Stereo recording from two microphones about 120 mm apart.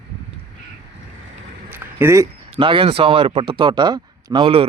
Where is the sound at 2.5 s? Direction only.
45° right (ahead or behind).